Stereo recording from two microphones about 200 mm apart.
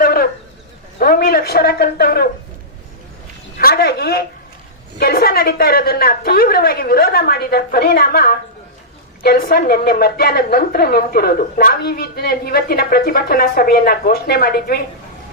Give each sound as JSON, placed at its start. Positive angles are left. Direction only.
{"t": 0.0, "sound": "a sound", "side_deg": 50}
{"t": 0.9, "sound": "a woman's voice", "side_deg": 45}
{"t": 3.6, "sound": "a woman's voice", "side_deg": 50}